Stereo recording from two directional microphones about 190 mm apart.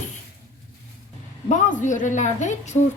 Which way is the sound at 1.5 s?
40° left (ahead or behind).